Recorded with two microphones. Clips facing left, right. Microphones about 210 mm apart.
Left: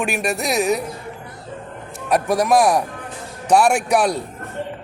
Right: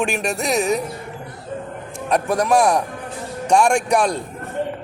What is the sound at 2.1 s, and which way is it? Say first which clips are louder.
A man's voice: left 1 dB; 10° left (ahead or behind).